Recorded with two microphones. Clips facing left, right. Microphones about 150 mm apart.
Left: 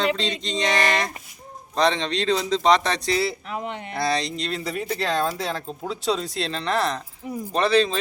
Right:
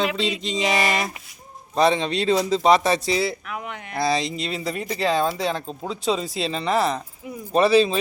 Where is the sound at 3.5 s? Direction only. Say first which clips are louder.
Left 2 dB; 25° left (ahead or behind).